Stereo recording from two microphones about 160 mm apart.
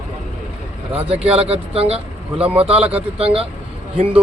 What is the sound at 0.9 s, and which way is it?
Speech, 40° right (ahead or behind).